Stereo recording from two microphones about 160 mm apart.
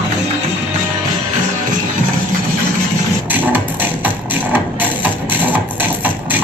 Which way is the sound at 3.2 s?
10° right (ahead or behind).